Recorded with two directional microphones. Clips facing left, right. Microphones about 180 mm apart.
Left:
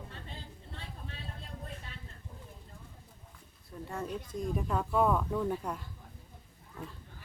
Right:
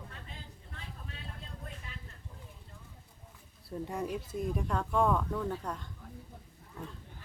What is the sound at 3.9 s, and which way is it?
Speech, 10° right (ahead or behind).